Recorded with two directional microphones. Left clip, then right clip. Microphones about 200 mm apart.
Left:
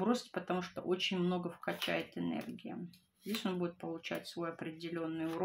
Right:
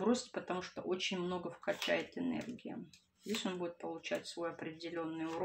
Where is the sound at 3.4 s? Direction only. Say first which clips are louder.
Left 3 dB; 30° left (ahead or behind).